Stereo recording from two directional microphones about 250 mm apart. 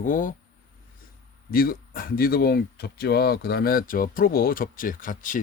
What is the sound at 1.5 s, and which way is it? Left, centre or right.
Speech, left.